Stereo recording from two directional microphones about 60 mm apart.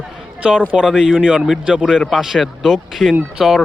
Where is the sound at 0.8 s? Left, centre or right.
Centre.